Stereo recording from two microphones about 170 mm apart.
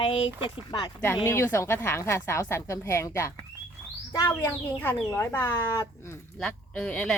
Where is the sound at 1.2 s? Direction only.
15° left (ahead or behind).